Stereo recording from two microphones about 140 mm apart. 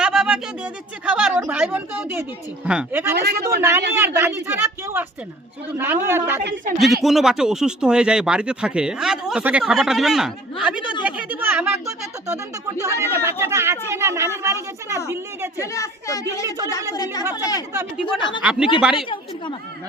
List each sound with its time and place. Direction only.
0.0 s speech: 5° right (ahead or behind)
6.7 s speech: centre (ahead or behind); by 15.0 s 20° right (ahead or behind)
15.5 s a woman's voice: 20° left (ahead or behind)
18.4 s speech: 5° right (ahead or behind)
18.9 s a woman's voice: 35° left (ahead or behind)